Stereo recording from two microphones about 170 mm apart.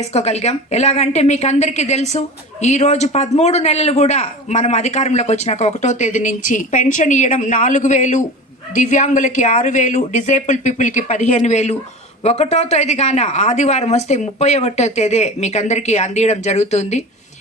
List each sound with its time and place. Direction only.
0.0 s a woman's voice: 40° left (ahead or behind)